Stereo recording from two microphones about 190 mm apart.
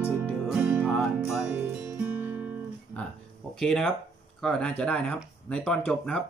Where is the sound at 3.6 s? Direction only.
5° left (ahead or behind).